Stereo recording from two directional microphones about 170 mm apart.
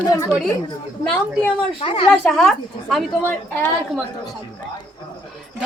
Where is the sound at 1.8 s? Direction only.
30° left (ahead or behind).